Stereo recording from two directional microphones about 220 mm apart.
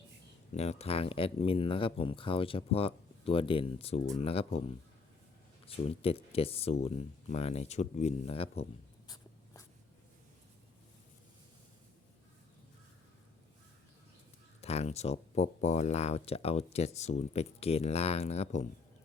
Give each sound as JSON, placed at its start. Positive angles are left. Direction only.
{"t": 0.5, "sound": "speech", "side_deg": 30}
{"t": 5.6, "sound": "speech", "side_deg": 25}
{"t": 9.0, "sound": "writing", "side_deg": 15}
{"t": 14.6, "sound": "speech", "side_deg": 30}